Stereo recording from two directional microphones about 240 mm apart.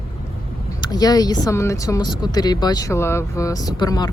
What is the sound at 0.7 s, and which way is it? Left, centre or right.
Speech, centre.